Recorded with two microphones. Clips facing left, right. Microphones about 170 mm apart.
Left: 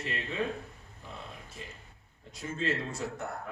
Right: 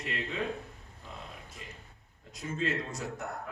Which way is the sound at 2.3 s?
30° left (ahead or behind).